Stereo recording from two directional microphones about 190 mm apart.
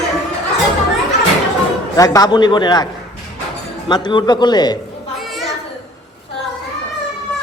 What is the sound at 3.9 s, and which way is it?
Speech, 25° left (ahead or behind).